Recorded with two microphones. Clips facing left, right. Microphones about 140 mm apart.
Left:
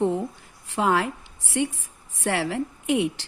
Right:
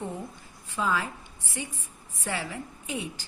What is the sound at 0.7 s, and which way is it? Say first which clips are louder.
A woman's voice: left 6 dB; 75° left (ahead or behind).